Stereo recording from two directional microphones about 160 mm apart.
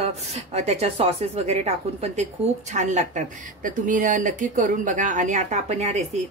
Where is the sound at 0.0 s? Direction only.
45° right (ahead or behind).